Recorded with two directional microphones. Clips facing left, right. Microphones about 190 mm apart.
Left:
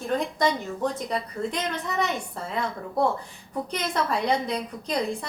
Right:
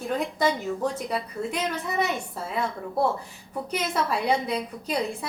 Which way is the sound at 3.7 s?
5° right (ahead or behind).